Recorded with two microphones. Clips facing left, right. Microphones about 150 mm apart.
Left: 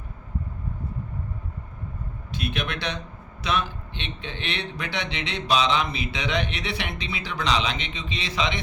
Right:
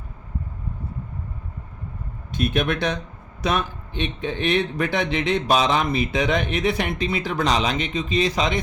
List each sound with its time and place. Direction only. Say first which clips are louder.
2.3 s a man's voice: right 7 dB; 50° right (ahead or behind)